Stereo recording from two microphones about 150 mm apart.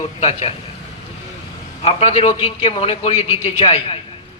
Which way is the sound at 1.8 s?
40° left (ahead or behind).